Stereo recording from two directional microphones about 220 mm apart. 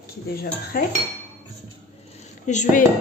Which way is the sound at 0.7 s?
40° left (ahead or behind).